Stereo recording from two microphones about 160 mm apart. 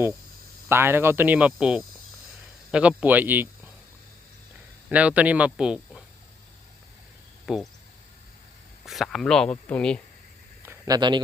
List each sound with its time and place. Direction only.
0.7 s speech: 15° right (ahead or behind)
4.9 s speech: 10° right (ahead or behind)
7.4 s speech: centre (ahead or behind)
8.9 s speech: centre (ahead or behind)
10.6 s a sound: 20° right (ahead or behind)